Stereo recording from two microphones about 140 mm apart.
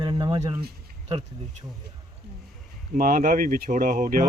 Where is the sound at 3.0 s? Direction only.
85° right.